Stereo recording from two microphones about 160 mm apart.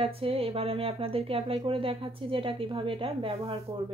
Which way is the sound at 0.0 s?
35° right (ahead or behind).